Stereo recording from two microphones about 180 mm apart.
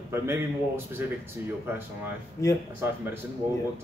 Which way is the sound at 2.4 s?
15° left (ahead or behind).